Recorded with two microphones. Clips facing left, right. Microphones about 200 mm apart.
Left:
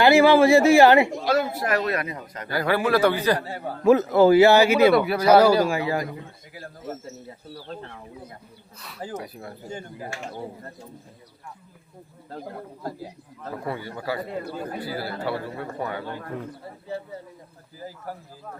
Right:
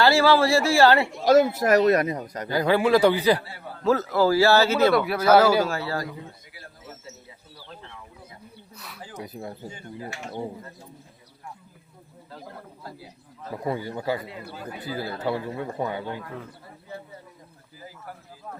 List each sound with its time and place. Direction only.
0.0 s speech: 20° left (ahead or behind)
1.2 s speech: 40° right (ahead or behind)
2.5 s speech: 15° right (ahead or behind)
3.8 s speech: 20° left (ahead or behind)
6.5 s speech: 45° left (ahead or behind)
9.2 s a man's voice: 20° right (ahead or behind)
12.8 s speech: 45° left (ahead or behind)
13.7 s a man's voice: 20° right (ahead or behind)
14.2 s speech: 45° left (ahead or behind)
14.8 s a man's voice: 20° right (ahead or behind)